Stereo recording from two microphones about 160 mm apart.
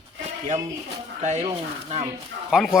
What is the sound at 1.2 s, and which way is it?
Speech, 45° right (ahead or behind).